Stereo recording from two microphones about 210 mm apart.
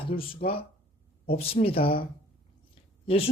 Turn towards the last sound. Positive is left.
turn(degrees=25)  # may be behind; listen again after turning